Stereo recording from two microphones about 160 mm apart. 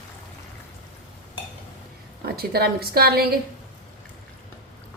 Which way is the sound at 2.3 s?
75° right (ahead or behind).